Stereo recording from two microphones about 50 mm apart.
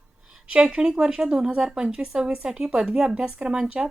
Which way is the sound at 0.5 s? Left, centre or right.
Centre.